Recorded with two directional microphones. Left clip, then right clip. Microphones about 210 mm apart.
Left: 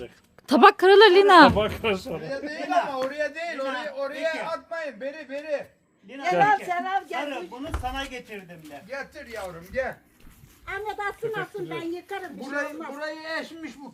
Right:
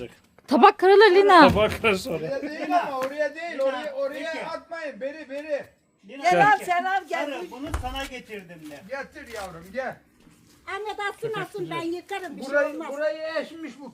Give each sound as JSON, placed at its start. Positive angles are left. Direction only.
{"t": 0.4, "sound": "speech", "side_deg": 10}
{"t": 1.5, "sound": "speech", "side_deg": -55}
{"t": 2.5, "sound": "a man's voice", "side_deg": 30}
{"t": 6.2, "sound": "a woman's voice", "side_deg": -50}
{"t": 7.8, "sound": "speech", "side_deg": 30}
{"t": 8.9, "sound": "speech", "side_deg": 45}
{"t": 10.7, "sound": "a woman's voice", "side_deg": -55}
{"t": 13.0, "sound": "speech", "side_deg": 45}